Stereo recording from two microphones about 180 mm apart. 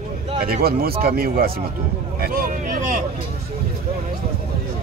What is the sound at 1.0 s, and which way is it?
Speech, 55° right (ahead or behind).